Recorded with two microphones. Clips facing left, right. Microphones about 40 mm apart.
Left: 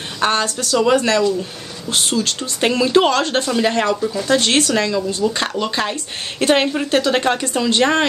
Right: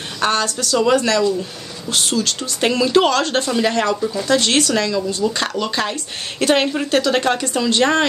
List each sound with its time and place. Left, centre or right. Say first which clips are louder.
0.2 s speech: left 1 dB; left
3.4 s speech: left 1 dB; centre
4.4 s speech: left 1 dB; left